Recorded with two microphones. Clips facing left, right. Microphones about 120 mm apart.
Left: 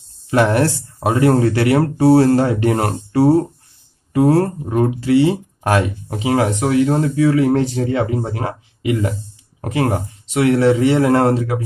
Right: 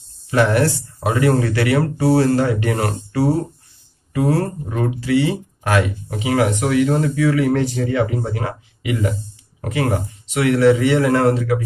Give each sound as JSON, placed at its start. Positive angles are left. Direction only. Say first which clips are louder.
{"t": 0.3, "sound": "speech", "louder": "left 1 dB", "side_deg": 40}
{"t": 9.6, "sound": "speech", "louder": "left 2 dB", "side_deg": 40}